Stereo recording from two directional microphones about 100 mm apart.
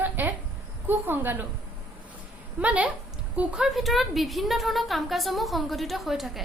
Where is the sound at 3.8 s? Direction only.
Centre (ahead or behind).